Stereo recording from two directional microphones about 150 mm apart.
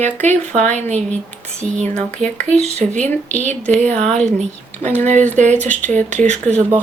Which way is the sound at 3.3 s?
10° left (ahead or behind).